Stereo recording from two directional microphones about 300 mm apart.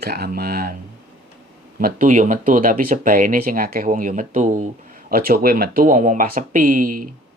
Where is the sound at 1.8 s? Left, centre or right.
Right.